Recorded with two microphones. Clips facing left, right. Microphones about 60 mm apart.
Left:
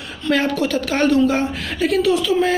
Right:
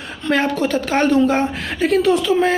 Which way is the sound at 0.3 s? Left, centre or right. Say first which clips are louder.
Right 1 dB; right.